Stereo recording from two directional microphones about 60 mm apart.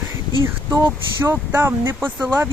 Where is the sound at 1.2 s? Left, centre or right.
Right.